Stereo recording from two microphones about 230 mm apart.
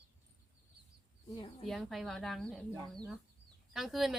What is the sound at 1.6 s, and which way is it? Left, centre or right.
Speech, centre.